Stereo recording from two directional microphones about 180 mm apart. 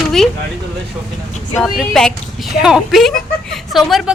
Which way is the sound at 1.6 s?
5° left (ahead or behind).